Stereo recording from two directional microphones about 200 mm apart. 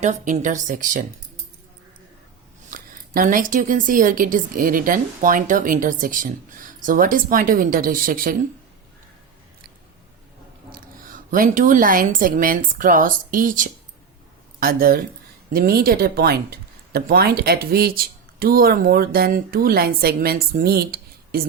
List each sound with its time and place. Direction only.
0.0 s speech: 40° right (ahead or behind)
2.6 s speech: 45° right (ahead or behind)
10.7 s speech: 45° right (ahead or behind)